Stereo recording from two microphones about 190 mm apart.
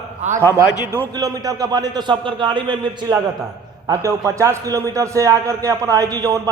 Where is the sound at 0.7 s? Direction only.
15° left (ahead or behind).